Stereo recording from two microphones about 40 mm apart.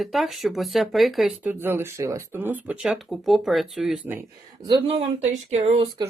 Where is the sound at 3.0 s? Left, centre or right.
Centre.